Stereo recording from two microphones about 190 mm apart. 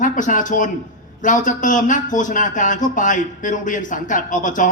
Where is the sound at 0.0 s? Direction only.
45° left (ahead or behind).